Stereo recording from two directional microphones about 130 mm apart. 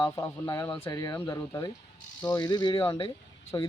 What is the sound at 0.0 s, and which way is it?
Speech, 25° left (ahead or behind).